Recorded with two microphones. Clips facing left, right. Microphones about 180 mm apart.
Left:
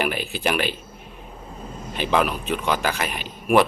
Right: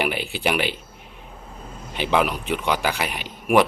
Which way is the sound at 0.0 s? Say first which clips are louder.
Even; 15° right (ahead or behind).